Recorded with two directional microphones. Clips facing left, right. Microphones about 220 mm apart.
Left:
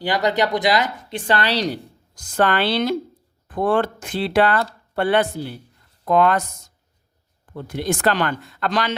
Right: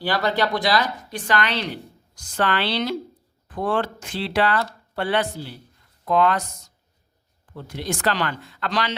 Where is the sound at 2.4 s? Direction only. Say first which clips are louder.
Left 4 dB; 45° left (ahead or behind).